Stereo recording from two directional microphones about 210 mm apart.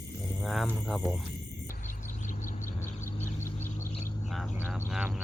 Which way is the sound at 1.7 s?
40° left (ahead or behind).